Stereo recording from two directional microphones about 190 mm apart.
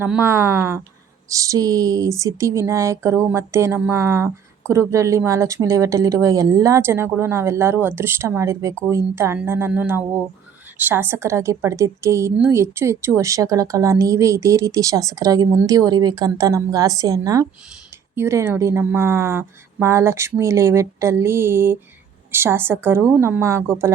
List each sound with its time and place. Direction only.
0.0 s a woman's voice: 10° right (ahead or behind)